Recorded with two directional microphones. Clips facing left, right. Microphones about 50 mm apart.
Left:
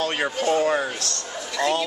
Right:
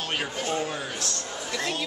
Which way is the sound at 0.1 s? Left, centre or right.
Left.